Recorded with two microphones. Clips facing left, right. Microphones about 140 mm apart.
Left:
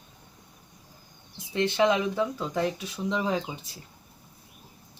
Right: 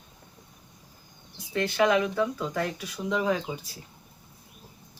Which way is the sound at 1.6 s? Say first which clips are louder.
Even; 25° left (ahead or behind).